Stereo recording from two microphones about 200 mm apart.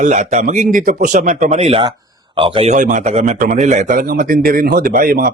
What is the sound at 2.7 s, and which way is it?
A man's voice, 40° right (ahead or behind).